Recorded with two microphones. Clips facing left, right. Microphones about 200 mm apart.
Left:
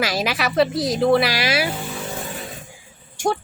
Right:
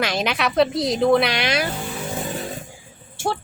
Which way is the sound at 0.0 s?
5° left (ahead or behind).